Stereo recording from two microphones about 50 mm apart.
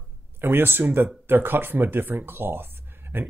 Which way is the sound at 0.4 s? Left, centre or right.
Right.